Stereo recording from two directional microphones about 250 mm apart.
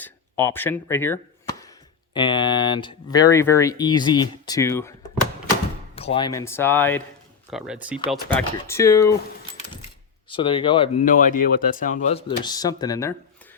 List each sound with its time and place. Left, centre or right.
0.0 s chop: centre
2.1 s speech: centre
6.0 s speech: left
7.5 s speech: centre
10.2 s speech: centre
11.0 s speech: left; by 13.1 s centre